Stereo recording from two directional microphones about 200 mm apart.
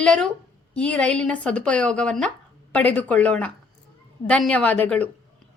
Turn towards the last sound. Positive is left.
turn(degrees=5)  # may be behind; listen again after turning